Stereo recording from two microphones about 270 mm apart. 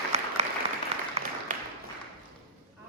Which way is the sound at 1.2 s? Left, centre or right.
Right.